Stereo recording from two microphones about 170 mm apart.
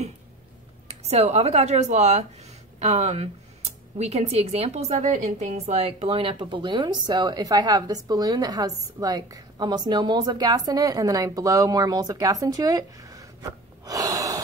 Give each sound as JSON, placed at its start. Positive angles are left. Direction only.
{"t": 0.8, "sound": "speech", "side_deg": -40}